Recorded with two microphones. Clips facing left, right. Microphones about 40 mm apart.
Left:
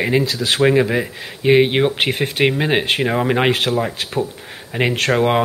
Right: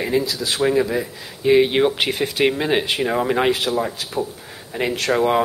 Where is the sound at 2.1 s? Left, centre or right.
Left.